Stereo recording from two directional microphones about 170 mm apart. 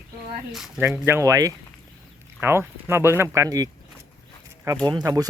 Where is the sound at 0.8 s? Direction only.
15° right (ahead or behind).